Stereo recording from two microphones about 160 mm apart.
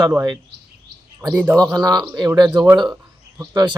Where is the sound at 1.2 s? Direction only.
10° right (ahead or behind).